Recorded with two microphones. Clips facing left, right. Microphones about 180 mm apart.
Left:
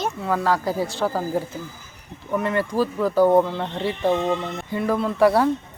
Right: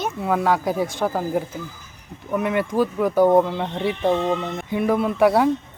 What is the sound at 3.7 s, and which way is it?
Speech, centre (ahead or behind).